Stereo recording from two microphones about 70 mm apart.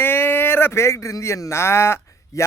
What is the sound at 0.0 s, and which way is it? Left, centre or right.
Speech, left.